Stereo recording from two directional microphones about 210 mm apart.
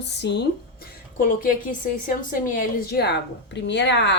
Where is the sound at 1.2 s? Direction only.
40° left (ahead or behind).